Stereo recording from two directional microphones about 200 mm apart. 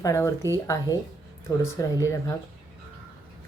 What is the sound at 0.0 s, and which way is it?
Speech, 15° left (ahead or behind).